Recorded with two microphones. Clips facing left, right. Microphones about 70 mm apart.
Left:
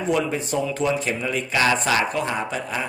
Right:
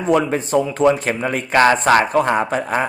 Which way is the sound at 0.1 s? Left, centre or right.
Right.